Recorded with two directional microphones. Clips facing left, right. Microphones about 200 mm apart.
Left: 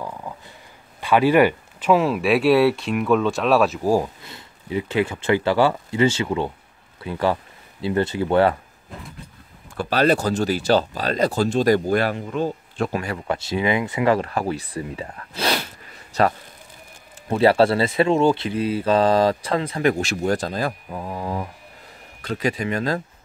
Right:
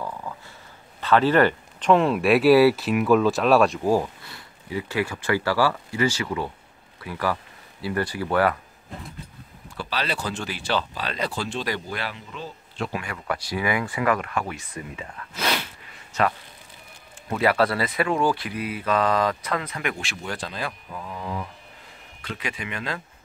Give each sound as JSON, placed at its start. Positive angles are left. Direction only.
{"t": 0.3, "sound": "a sound", "side_deg": 15}
{"t": 1.0, "sound": "speech", "side_deg": 10}
{"t": 9.8, "sound": "speech", "side_deg": 50}